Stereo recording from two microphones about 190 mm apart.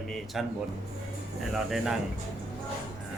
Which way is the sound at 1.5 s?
Centre (ahead or behind).